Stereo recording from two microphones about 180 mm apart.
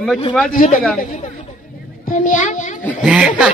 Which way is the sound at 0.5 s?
40° left (ahead or behind).